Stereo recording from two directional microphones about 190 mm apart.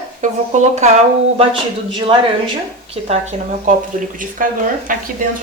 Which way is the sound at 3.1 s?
40° right (ahead or behind).